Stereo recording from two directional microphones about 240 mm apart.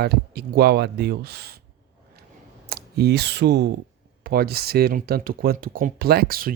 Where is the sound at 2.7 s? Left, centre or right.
Right.